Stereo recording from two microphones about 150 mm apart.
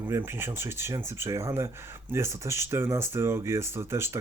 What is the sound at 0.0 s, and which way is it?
Speech, 15° right (ahead or behind).